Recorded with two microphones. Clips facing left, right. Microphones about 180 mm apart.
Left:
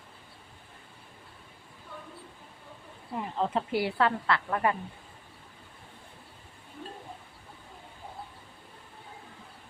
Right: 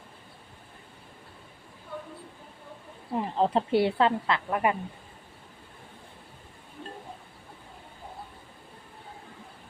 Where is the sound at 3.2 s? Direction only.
30° right (ahead or behind); by 4.8 s 15° right (ahead or behind).